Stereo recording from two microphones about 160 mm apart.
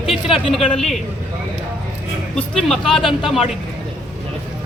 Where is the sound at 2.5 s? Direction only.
Centre (ahead or behind).